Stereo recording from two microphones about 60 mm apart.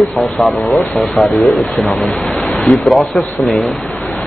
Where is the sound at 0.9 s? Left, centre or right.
Centre.